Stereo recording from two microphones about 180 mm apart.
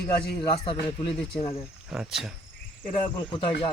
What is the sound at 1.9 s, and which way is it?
Speech, centre (ahead or behind).